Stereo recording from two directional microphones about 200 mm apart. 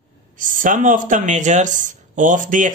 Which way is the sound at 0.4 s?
40° right (ahead or behind).